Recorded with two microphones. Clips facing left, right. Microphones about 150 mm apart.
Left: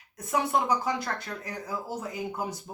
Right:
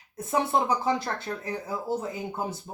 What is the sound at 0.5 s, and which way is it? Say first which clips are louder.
Speech: right 2 dB; 30° right (ahead or behind).